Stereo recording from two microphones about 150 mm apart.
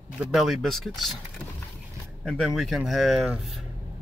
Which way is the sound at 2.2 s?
Centre (ahead or behind).